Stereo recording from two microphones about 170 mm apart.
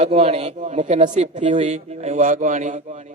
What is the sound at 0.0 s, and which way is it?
A man's voice, 40° right (ahead or behind).